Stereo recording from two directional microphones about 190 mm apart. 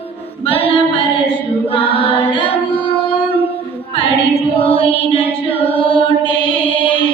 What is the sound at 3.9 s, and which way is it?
Child singing, 30° left (ahead or behind).